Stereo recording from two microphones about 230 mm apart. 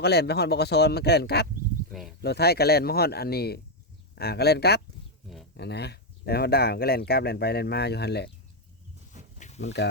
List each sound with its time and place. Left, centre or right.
0.0 s speech: left
1.9 s speech: centre
2.2 s speech: left